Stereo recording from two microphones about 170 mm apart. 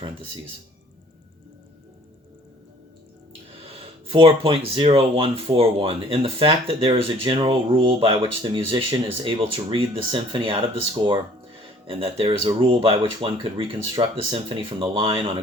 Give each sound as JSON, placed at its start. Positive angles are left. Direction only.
{"t": 4.0, "sound": "speech", "side_deg": -30}